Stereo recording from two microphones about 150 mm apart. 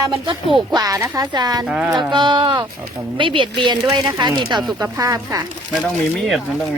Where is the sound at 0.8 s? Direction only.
25° right (ahead or behind).